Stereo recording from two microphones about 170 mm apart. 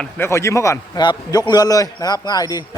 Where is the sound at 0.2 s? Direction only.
15° left (ahead or behind).